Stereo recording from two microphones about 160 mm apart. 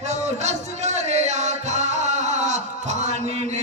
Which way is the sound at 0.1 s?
45° right (ahead or behind).